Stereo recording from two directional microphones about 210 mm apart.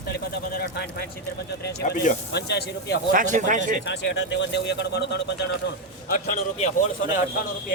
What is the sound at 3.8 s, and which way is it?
Speech, 55° left (ahead or behind).